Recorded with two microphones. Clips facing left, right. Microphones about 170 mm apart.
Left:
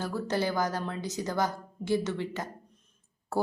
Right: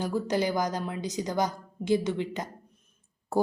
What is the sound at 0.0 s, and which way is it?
A woman's voice, 15° right (ahead or behind).